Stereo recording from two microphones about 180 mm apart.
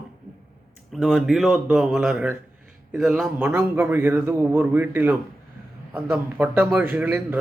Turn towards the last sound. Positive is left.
turn(degrees=-10)  # may be behind; listen again after turning